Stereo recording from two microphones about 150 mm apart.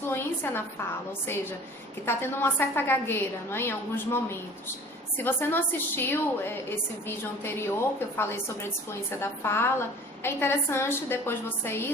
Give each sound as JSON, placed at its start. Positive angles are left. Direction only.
{"t": 0.1, "sound": "a woman's voice", "side_deg": 15}
{"t": 2.0, "sound": "a woman's voice", "side_deg": 15}